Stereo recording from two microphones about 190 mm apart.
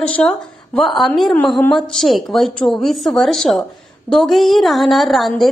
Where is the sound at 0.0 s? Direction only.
5° left (ahead or behind).